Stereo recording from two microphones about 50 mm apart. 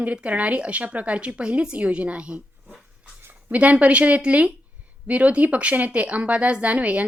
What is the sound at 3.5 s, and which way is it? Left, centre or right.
Speech, right.